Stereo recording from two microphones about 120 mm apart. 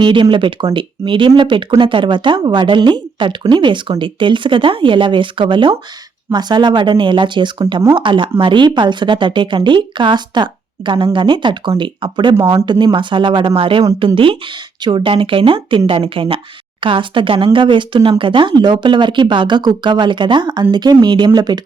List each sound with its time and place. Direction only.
0.0 s speech: 45° right (ahead or behind)